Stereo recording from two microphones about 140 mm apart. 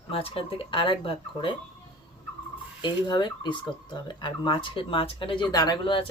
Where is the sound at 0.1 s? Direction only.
45° left (ahead or behind).